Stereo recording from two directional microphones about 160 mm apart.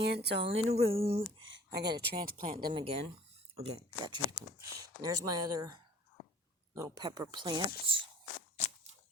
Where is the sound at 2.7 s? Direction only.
35° right (ahead or behind).